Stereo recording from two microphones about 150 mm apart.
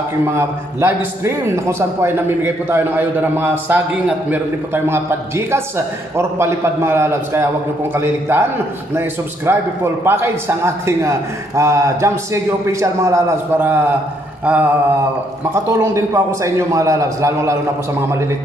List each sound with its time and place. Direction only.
0.4 s a man's voice: 15° right (ahead or behind)
6.1 s a man's voice: 15° right (ahead or behind)
9.5 s a man's voice: 15° right (ahead or behind)
14.4 s a sound: 10° right (ahead or behind)
15.5 s a man's voice: 15° right (ahead or behind)